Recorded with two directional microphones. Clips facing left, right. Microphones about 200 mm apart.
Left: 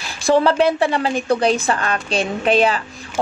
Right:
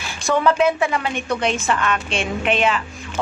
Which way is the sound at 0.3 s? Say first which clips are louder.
Left 3 dB; 35° left (ahead or behind).